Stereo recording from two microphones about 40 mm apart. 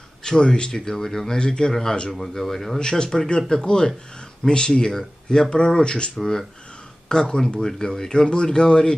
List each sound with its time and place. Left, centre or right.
0.2 s speech: centre
2.8 s speech: centre